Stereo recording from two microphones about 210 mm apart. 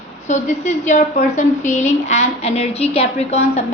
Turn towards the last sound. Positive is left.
turn(degrees=30)  # may be behind; listen again after turning